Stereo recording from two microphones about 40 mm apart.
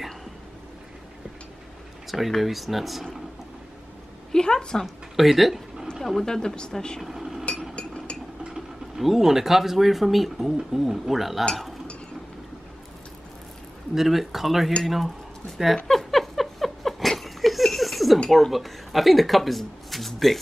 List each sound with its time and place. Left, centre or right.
2.0 s speech: centre
4.3 s a woman's voice: centre
4.8 s speech: centre
6.2 s speech: centre
7.0 s cutlery: centre
7.7 s chink: left
8.5 s speech: centre
13.9 s speech: centre
15.5 s a sound: centre
18.3 s speech: centre